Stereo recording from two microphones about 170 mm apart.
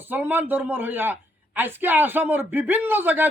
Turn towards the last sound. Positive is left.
turn(degrees=-10)  # may be behind; listen again after turning